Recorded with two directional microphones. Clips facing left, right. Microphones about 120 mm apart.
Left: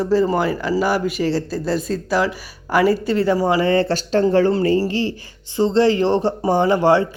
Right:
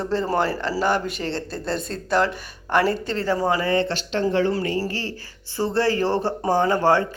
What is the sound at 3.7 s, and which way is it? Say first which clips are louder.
Speech: left 5 dB; 35° left (ahead or behind).